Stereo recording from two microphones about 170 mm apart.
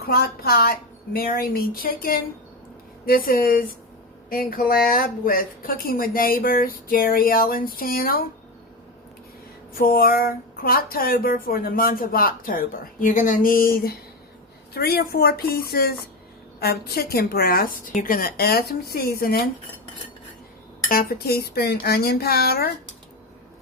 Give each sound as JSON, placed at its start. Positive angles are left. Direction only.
{"t": 0.0, "sound": "speech", "side_deg": 65}
{"t": 9.7, "sound": "speech", "side_deg": 60}
{"t": 20.9, "sound": "speech", "side_deg": 60}